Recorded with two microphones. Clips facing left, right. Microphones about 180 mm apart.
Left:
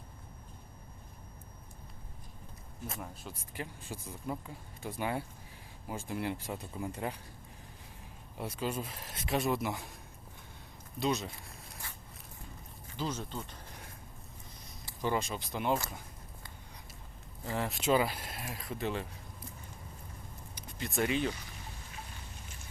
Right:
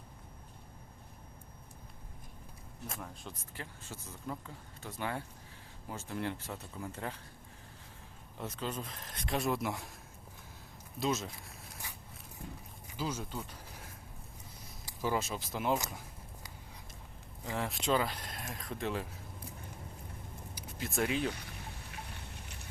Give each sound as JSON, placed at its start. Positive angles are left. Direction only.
{"t": 2.8, "sound": "speech", "side_deg": 5}
{"t": 8.4, "sound": "speech", "side_deg": 10}
{"t": 11.0, "sound": "speech", "side_deg": 0}
{"t": 12.9, "sound": "a sound", "side_deg": -10}
{"t": 15.0, "sound": "speech", "side_deg": -5}
{"t": 17.4, "sound": "speech", "side_deg": 0}
{"t": 20.6, "sound": "speech", "side_deg": -5}
{"t": 21.8, "sound": "a sound", "side_deg": -65}